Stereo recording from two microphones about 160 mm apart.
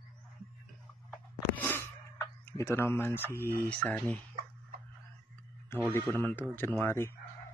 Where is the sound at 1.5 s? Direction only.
15° left (ahead or behind).